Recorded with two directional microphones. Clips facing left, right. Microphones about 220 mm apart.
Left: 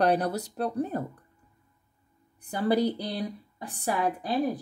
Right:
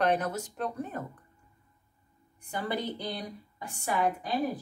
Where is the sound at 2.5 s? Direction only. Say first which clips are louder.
Left 8 dB; 40° left (ahead or behind).